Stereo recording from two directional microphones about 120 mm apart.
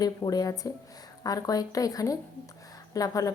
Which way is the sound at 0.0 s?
30° left (ahead or behind).